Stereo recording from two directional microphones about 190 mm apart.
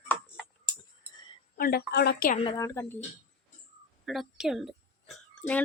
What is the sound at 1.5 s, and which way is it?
Speech, 50° left (ahead or behind).